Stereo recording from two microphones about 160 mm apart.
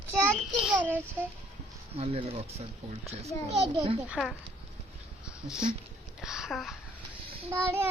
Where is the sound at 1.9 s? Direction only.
40° right (ahead or behind).